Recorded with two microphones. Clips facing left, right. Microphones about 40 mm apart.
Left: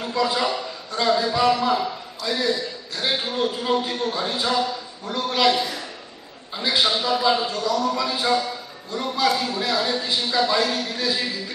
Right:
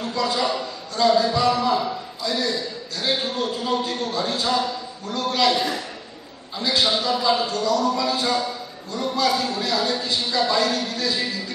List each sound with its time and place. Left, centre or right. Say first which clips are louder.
0.0 s a man's voice: left 1 dB; centre